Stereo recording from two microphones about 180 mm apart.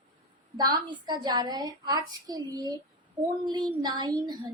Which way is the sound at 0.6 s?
20° right (ahead or behind).